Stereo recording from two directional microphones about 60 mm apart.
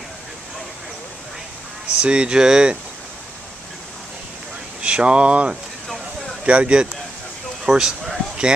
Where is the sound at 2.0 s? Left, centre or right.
Centre.